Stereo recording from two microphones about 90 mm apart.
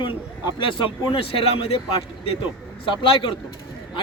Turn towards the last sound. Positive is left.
turn(degrees=70)  # may be behind; listen again after turning